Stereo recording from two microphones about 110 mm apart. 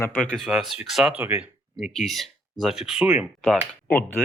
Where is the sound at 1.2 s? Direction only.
15° right (ahead or behind).